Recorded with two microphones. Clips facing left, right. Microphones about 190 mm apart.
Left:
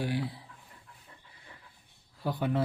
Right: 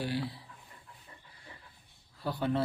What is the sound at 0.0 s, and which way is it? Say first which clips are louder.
Speech: left 2 dB; 15° left (ahead or behind).